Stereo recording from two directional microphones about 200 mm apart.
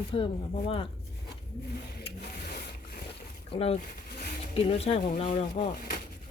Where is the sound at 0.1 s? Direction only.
25° left (ahead or behind).